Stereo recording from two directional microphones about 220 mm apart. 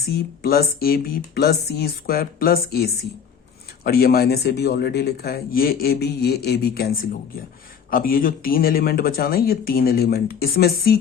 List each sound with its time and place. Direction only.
0.0 s speech: 45° left (ahead or behind)